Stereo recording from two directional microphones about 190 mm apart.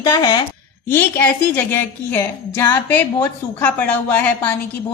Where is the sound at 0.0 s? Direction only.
20° left (ahead or behind).